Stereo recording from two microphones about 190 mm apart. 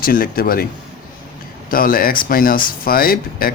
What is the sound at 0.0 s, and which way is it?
Speech, 50° left (ahead or behind).